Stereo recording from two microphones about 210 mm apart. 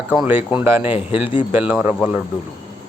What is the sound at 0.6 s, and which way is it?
Speech, 10° right (ahead or behind).